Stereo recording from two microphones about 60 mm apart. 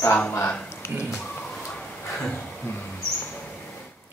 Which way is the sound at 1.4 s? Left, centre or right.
Centre.